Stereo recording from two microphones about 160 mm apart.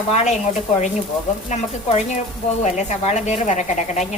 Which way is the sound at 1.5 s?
45° left (ahead or behind).